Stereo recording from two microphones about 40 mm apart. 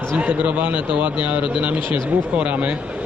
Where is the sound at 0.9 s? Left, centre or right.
Right.